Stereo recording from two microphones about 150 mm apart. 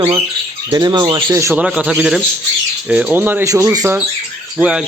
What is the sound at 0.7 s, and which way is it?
Speech, 25° right (ahead or behind).